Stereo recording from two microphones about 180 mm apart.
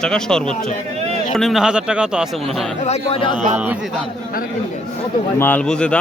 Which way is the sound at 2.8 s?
35° left (ahead or behind).